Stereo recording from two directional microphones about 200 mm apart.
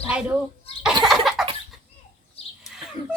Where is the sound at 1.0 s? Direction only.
Centre (ahead or behind).